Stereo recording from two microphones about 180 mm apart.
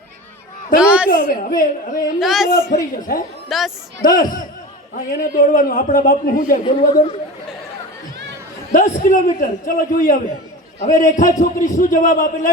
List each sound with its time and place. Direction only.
0.8 s a woman's voice: 5° right (ahead or behind)
1.3 s a man's voice: 50° left (ahead or behind)
2.1 s a man's voice: centre (ahead or behind)
2.5 s a man's voice: 55° left (ahead or behind)
3.5 s a man's voice: centre (ahead or behind)
4.0 s a man's voice: 50° left (ahead or behind)
8.7 s a man's voice: 45° left (ahead or behind)